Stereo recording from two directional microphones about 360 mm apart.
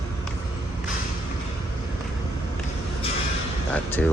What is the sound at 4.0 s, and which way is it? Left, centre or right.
Speech, centre.